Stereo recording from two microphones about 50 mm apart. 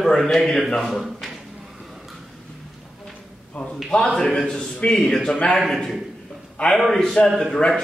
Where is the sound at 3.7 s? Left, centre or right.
Centre.